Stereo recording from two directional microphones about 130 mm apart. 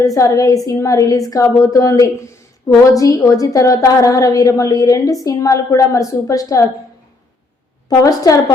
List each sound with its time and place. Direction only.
0.0 s a woman's voice: 25° left (ahead or behind)
7.9 s a woman's voice: 30° left (ahead or behind)